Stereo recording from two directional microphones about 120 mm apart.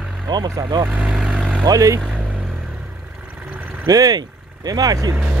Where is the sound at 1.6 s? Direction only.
30° right (ahead or behind).